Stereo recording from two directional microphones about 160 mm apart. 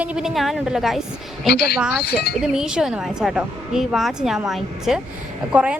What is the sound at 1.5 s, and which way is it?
Speech, 85° left.